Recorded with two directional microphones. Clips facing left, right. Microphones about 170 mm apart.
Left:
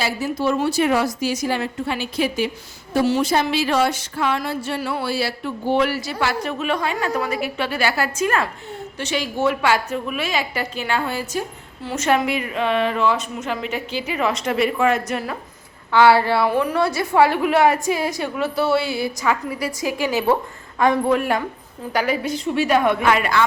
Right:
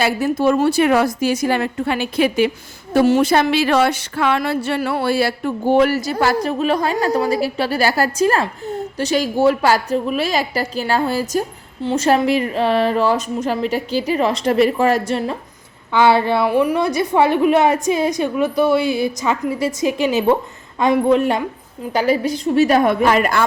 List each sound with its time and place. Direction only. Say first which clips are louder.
0.0 s a woman's voice: right 5 dB; 55° right (ahead or behind)
11.8 s a woman's voice: right 4 dB; 30° right (ahead or behind)
15.9 s a woman's voice: even; 20° right (ahead or behind)
21.9 s a woman's voice: right 4 dB; 35° right (ahead or behind)